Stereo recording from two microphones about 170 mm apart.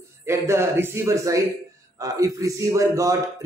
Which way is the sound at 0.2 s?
15° right (ahead or behind).